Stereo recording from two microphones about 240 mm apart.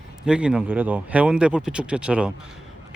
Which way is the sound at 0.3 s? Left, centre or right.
Centre.